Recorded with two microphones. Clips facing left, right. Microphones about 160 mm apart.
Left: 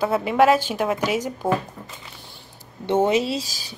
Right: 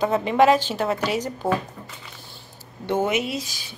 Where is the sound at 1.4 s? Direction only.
10° right (ahead or behind).